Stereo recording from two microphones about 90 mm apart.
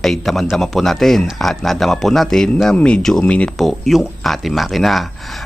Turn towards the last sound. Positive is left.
turn(degrees=0)  # may be behind; listen again after turning